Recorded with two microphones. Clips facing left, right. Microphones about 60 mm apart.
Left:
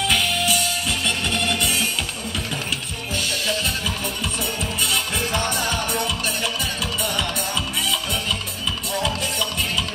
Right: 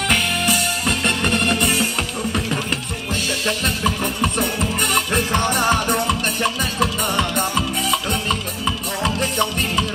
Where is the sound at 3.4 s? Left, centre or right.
Right.